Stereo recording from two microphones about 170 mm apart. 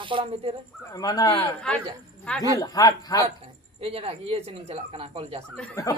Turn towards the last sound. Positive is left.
turn(degrees=20)  # may be behind; listen again after turning